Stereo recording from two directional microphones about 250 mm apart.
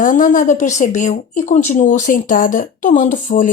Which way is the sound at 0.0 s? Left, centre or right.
Left.